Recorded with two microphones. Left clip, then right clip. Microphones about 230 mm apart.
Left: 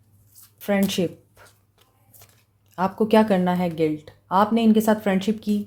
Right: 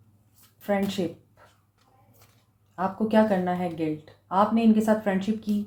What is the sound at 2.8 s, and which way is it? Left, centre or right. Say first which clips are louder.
Speech: left 4 dB; left.